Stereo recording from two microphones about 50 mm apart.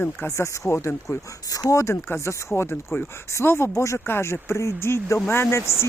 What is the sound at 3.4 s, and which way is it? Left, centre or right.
Speech, left.